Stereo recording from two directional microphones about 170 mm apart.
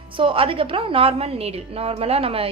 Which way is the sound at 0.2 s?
30° right (ahead or behind).